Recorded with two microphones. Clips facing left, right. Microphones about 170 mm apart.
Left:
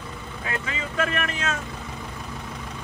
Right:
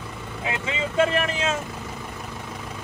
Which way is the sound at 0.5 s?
30° right (ahead or behind).